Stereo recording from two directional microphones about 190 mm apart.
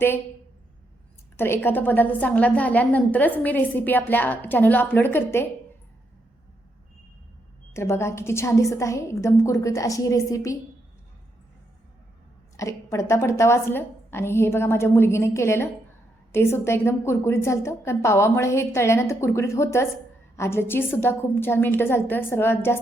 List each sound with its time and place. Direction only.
1.4 s a woman's voice: 10° left (ahead or behind)
7.7 s a woman's voice: 15° left (ahead or behind)
12.5 s a woman's voice: 15° left (ahead or behind)